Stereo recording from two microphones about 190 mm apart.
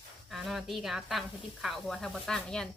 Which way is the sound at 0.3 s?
Centre (ahead or behind).